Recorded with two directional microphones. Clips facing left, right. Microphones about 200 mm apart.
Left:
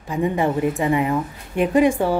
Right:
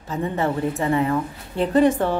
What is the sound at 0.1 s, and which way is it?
Speech, 15° left (ahead or behind).